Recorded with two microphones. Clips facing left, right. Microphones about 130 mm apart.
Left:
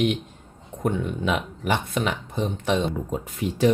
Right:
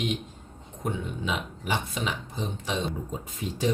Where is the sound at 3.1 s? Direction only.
70° left (ahead or behind).